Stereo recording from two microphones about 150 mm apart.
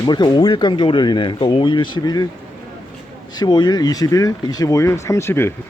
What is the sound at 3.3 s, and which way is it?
Speech, 30° left (ahead or behind).